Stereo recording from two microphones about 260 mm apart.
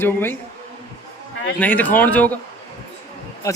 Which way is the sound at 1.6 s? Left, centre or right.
Centre.